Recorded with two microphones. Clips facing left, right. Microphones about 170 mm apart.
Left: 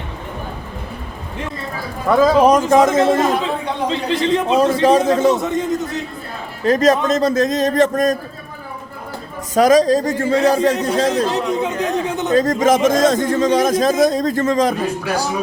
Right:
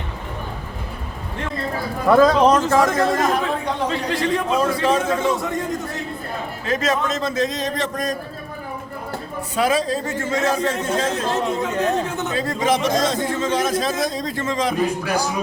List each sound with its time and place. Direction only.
2.0 s a man's voice: centre (ahead or behind); by 5.3 s 35° left (ahead or behind)
5.3 s speech: 20° left (ahead or behind)
6.7 s a man's voice: 40° left (ahead or behind)
9.6 s a man's voice: 40° left (ahead or behind)
11.3 s speech: 15° left (ahead or behind)
12.3 s a man's voice: 40° left (ahead or behind)